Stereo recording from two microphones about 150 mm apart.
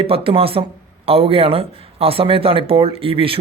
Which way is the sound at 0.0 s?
40° right (ahead or behind).